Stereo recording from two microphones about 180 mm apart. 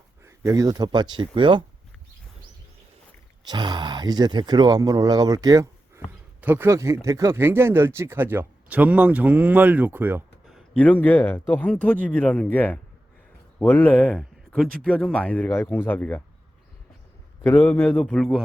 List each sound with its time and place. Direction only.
0.3 s speech: 20° right (ahead or behind)
3.4 s speech: 25° right (ahead or behind)
10.5 s speech: 10° left (ahead or behind)
17.4 s speech: 10° left (ahead or behind)